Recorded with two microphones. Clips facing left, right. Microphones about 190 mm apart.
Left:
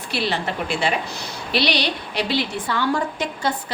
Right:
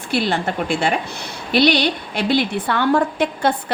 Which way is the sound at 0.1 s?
50° right (ahead or behind).